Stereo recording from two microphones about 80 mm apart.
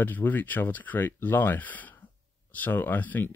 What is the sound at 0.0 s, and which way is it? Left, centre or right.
Speech, left.